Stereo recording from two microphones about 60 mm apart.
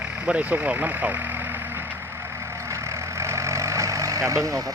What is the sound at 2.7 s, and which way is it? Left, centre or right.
Vehicle, right.